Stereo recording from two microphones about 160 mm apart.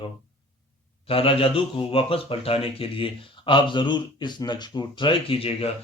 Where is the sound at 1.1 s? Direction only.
35° left (ahead or behind).